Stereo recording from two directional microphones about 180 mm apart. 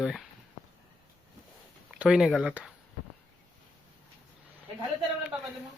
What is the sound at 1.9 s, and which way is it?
Speech, 5° right (ahead or behind).